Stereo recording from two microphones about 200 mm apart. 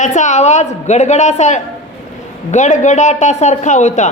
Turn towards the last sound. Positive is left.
turn(degrees=35)  # may be behind; listen again after turning